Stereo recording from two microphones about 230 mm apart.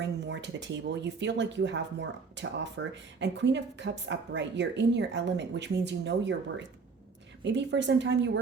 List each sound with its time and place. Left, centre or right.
0.0 s speech: right